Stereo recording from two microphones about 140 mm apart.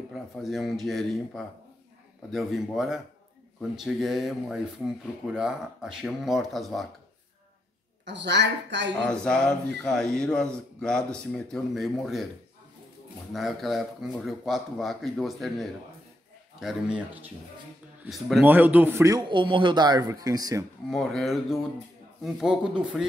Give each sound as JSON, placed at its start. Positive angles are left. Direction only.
{"t": 0.1, "sound": "speech", "side_deg": 0}
{"t": 8.9, "sound": "speech", "side_deg": 5}
{"t": 13.3, "sound": "speech", "side_deg": 0}
{"t": 18.4, "sound": "a man's voice", "side_deg": -15}
{"t": 19.2, "sound": "speech", "side_deg": -35}
{"t": 20.9, "sound": "speech", "side_deg": 5}